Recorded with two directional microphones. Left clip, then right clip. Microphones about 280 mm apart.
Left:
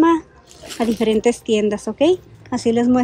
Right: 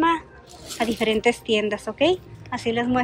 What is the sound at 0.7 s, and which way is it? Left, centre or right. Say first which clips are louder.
Speech: left 4 dB; centre.